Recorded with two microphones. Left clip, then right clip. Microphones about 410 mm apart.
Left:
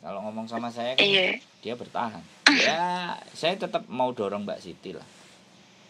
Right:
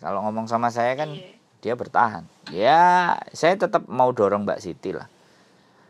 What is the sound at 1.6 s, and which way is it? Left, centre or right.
Speech, right.